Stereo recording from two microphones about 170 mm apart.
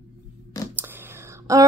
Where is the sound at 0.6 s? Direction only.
20° left (ahead or behind).